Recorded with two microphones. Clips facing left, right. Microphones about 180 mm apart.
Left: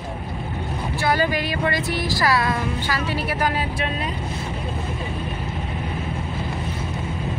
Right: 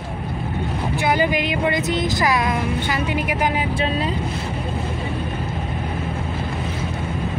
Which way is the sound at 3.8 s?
30° right (ahead or behind).